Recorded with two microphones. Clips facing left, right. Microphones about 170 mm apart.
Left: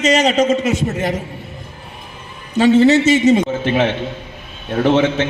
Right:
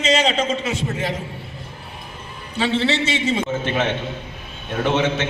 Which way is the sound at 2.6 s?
45° left (ahead or behind).